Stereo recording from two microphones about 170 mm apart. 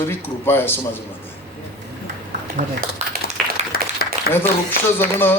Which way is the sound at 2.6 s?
45° right (ahead or behind).